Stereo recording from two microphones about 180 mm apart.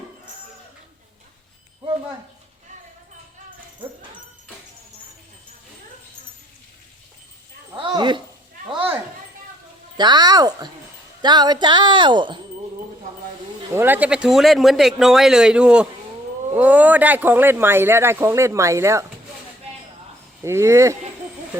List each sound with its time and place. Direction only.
7.7 s a sound: 25° right (ahead or behind)
10.0 s speech: 25° right (ahead or behind)
13.7 s a man's voice: 10° right (ahead or behind)
20.4 s speech: 15° right (ahead or behind)